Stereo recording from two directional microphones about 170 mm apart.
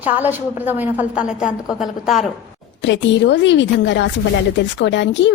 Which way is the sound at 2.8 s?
90° left.